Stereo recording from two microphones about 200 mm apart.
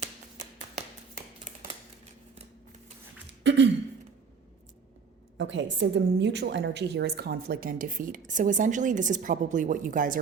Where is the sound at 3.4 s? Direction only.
60° right (ahead or behind).